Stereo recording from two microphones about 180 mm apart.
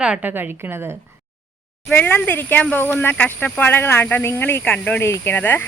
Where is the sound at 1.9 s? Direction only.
10° left (ahead or behind).